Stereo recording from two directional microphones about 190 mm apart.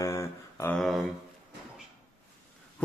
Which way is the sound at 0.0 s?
15° left (ahead or behind).